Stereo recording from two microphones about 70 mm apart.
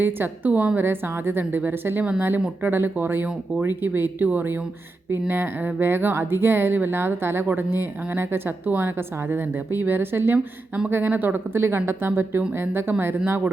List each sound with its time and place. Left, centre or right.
0.0 s speech: right